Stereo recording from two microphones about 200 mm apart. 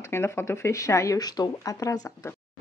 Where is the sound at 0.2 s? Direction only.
15° left (ahead or behind).